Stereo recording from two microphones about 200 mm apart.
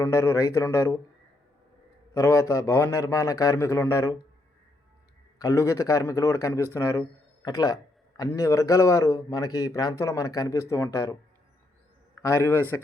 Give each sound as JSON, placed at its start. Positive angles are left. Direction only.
{"t": 0.0, "sound": "a man's voice", "side_deg": 15}
{"t": 2.1, "sound": "a man's voice", "side_deg": 15}
{"t": 5.4, "sound": "a man's voice", "side_deg": 15}
{"t": 12.2, "sound": "a man's voice", "side_deg": 15}